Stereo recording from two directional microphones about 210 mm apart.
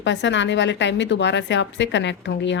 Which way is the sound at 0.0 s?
55° left (ahead or behind).